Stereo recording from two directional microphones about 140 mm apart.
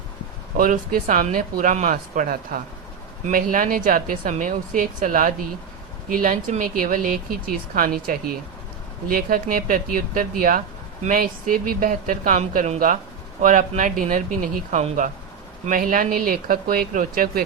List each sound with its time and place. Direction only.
0.5 s speech: 75° right (ahead or behind)
3.2 s speech: 75° right (ahead or behind); by 12.8 s 55° right (ahead or behind)
13.4 s speech: 70° right (ahead or behind)
14.8 s speech: 60° right (ahead or behind)
15.6 s speech: 80° right